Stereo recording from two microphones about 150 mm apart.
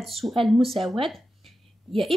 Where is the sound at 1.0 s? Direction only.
Centre (ahead or behind).